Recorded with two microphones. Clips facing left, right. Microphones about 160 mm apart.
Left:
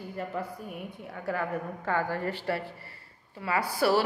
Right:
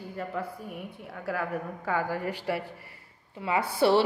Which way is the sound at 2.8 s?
15° right (ahead or behind).